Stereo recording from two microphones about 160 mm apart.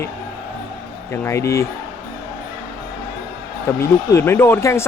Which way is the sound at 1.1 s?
15° left (ahead or behind).